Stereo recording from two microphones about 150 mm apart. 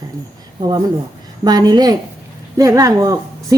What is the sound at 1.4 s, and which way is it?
A woman's voice, 25° right (ahead or behind).